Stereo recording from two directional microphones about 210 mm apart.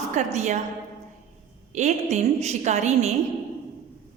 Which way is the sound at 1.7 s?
35° right (ahead or behind).